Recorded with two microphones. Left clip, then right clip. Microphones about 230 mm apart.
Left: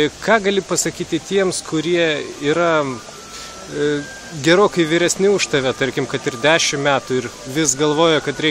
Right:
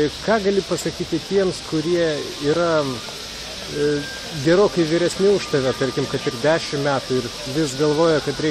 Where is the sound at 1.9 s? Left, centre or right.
Left.